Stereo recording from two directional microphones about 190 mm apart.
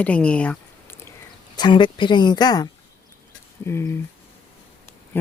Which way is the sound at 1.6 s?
25° left (ahead or behind).